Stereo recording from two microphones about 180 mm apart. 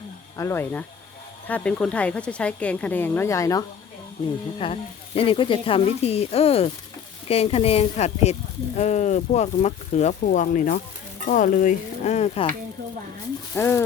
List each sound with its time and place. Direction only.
0.3 s speech: 15° left (ahead or behind)
4.5 s speech: 30° left (ahead or behind)
13.5 s speech: 15° left (ahead or behind)